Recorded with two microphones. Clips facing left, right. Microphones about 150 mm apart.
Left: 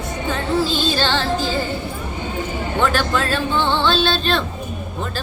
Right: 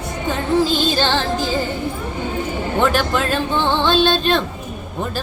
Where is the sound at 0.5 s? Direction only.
15° right (ahead or behind).